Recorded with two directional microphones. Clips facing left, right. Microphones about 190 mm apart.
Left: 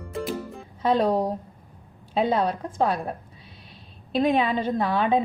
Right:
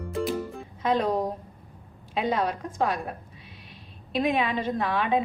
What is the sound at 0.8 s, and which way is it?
Music, 35° left (ahead or behind).